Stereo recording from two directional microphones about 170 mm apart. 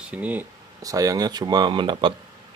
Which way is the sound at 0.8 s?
20° right (ahead or behind).